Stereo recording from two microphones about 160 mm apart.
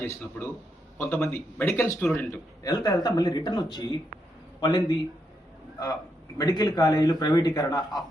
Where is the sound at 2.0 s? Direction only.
5° left (ahead or behind).